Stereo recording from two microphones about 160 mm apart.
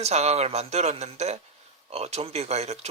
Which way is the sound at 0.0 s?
40° right (ahead or behind).